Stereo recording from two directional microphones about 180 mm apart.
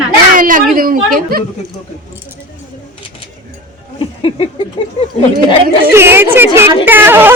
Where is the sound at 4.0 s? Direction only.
30° left (ahead or behind).